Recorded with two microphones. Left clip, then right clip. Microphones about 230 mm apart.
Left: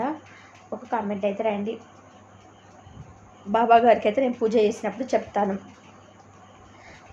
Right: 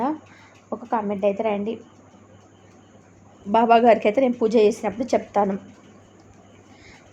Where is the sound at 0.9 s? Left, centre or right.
Right.